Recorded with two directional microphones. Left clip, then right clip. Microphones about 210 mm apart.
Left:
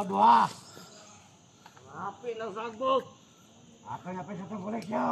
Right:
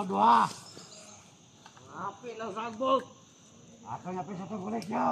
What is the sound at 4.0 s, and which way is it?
Speech, centre (ahead or behind).